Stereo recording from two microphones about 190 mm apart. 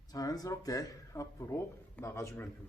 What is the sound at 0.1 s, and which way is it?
A man's voice, 20° left (ahead or behind).